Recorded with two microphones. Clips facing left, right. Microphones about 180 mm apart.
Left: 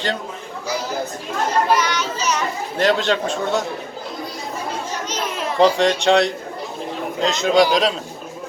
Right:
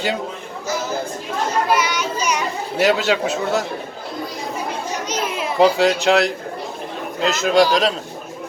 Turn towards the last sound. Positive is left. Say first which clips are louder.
# even
turn(degrees=0)  # may be behind; listen again after turning